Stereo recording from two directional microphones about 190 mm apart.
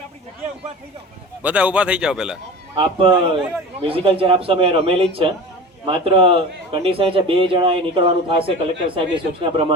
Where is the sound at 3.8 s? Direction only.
30° right (ahead or behind).